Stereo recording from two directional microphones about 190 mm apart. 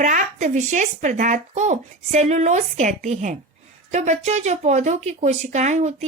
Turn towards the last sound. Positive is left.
turn(degrees=-35)  # may be behind; listen again after turning